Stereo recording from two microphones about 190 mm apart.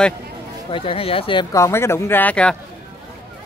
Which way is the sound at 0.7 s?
30° left (ahead or behind).